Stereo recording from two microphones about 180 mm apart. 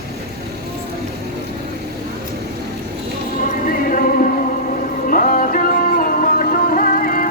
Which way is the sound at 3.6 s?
50° left (ahead or behind).